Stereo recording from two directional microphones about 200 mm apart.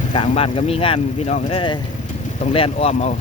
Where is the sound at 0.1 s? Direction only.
25° left (ahead or behind).